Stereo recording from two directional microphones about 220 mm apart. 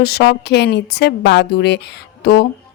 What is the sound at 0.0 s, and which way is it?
A woman's voice, 50° left (ahead or behind).